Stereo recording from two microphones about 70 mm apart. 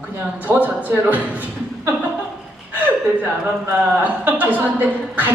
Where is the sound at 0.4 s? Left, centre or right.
Right.